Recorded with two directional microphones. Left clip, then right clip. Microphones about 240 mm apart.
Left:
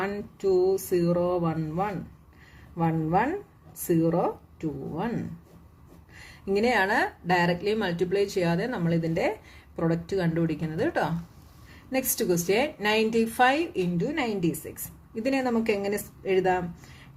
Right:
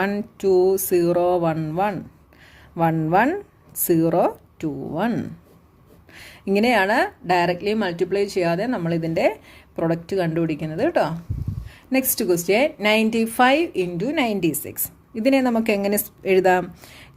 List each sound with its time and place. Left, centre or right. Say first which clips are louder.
0.0 s a woman's voice: right 6 dB; right